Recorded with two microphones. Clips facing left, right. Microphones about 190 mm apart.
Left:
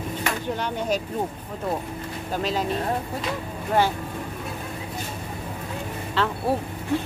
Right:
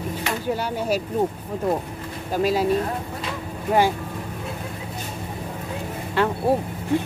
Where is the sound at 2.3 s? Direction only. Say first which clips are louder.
Right 5 dB; 10° right (ahead or behind).